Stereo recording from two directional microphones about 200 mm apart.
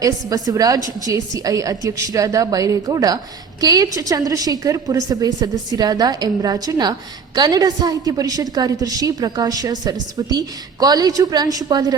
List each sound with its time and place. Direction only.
0.0 s a woman's voice: 20° right (ahead or behind)